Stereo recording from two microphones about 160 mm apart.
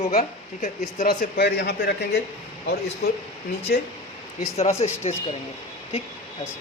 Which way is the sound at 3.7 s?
70° left (ahead or behind).